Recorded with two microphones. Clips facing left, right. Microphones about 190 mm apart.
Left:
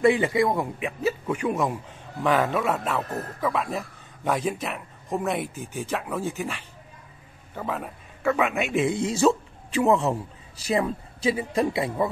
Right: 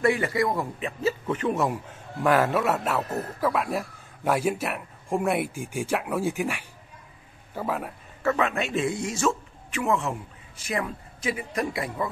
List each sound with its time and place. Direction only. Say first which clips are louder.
0.0 s a man's voice: left 3 dB; 15° left (ahead or behind)
0.7 s a man's voice: left 1 dB; 10° left (ahead or behind)
2.2 s a man's voice: right 1 dB; 5° right (ahead or behind)
8.5 s a man's voice: left 2 dB; 15° left (ahead or behind)
8.9 s a man's voice: left 5 dB; 30° left (ahead or behind)